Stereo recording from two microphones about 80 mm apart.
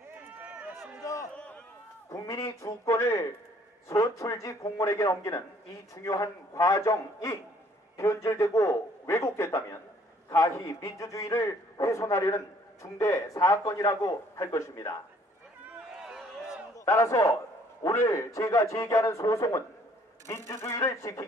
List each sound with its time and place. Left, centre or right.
0.1 s run: right
1.3 s run: centre
2.0 s a man's voice: left
15.9 s a sound: centre
16.8 s a man's voice: left